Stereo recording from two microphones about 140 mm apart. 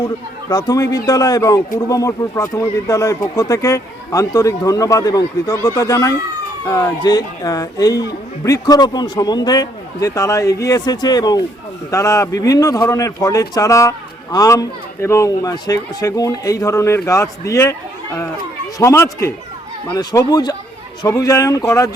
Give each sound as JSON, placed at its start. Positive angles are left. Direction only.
{"t": 0.5, "sound": "a man's voice", "side_deg": 25}
{"t": 18.8, "sound": "a man's voice", "side_deg": 20}